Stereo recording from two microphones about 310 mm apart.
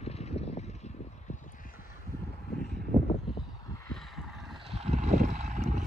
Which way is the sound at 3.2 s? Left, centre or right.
Centre.